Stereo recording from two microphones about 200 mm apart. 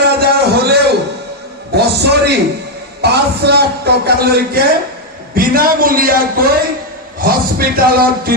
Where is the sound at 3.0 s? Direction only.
55° right (ahead or behind).